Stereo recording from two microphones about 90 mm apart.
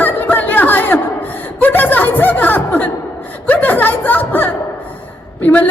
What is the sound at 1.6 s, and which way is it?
Music, 20° left (ahead or behind).